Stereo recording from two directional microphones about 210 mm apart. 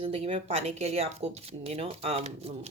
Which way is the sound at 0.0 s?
30° right (ahead or behind).